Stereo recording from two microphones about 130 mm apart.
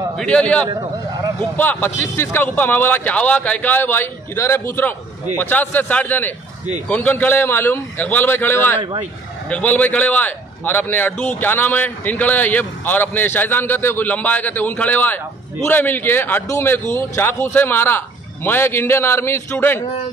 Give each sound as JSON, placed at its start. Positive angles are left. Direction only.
{"t": 0.2, "sound": "a man's voice", "side_deg": 10}